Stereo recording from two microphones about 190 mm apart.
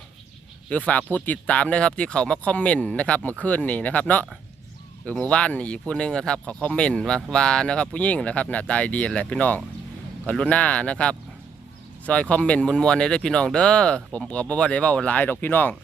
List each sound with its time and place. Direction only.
0.7 s speech: 5° left (ahead or behind)